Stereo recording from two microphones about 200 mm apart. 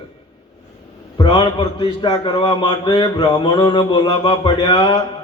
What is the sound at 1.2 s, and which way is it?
A man's voice, 25° left (ahead or behind).